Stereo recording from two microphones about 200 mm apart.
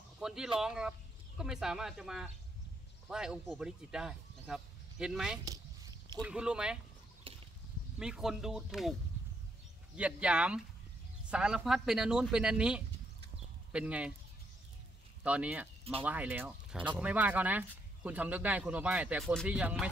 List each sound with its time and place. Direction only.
0.2 s a man's voice: 5° right (ahead or behind)
5.4 s a sound: 15° right (ahead or behind)
6.2 s speech: 5° right (ahead or behind)
7.3 s a sound: 25° right (ahead or behind)
8.0 s speech: 5° right (ahead or behind)
9.9 s speech: 5° right (ahead or behind)
15.2 s speech: 5° right (ahead or behind)